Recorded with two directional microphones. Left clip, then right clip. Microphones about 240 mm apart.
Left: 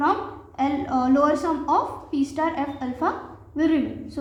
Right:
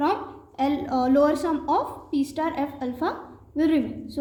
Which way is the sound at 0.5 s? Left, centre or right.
Left.